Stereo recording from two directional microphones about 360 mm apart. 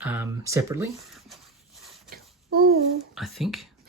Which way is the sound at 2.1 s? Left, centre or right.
Right.